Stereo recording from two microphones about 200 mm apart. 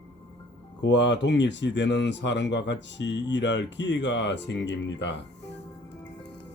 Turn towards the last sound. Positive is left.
turn(degrees=60)  # may be behind; listen again after turning